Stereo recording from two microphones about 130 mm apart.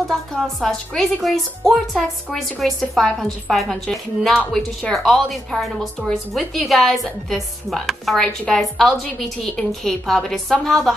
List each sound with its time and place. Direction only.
0.1 s speech: centre (ahead or behind)